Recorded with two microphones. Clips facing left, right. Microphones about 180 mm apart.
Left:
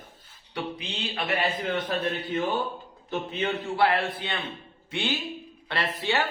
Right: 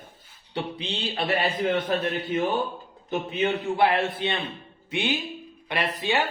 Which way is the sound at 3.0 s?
15° right (ahead or behind).